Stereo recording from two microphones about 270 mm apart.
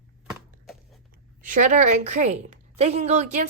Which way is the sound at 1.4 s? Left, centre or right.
Right.